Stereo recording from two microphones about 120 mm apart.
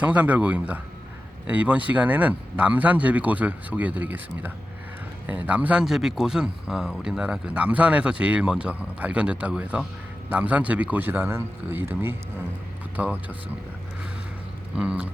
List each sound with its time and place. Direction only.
0.0 s speech: 10° right (ahead or behind)
14.8 s speech: 10° right (ahead or behind)